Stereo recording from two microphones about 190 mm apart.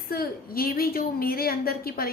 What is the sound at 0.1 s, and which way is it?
A woman's voice, 50° left (ahead or behind).